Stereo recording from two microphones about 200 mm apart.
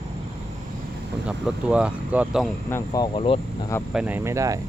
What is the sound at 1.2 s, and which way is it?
Speech, 5° right (ahead or behind).